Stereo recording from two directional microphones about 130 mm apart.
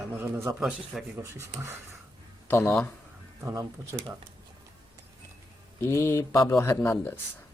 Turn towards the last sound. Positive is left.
turn(degrees=15)  # may be behind; listen again after turning